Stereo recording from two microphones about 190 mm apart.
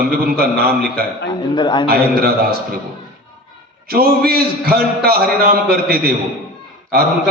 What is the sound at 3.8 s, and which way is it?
A man's voice, 50° right (ahead or behind).